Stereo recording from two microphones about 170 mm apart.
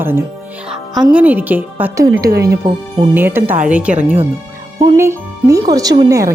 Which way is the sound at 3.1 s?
10° right (ahead or behind).